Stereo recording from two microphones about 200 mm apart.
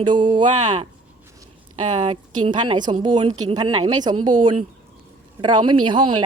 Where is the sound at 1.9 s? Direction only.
35° right (ahead or behind).